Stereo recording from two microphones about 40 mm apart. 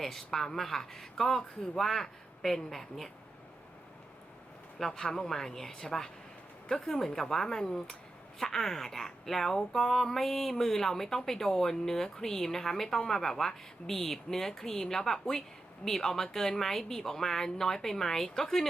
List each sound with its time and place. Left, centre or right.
0.0 s speech: centre
4.8 s speech: centre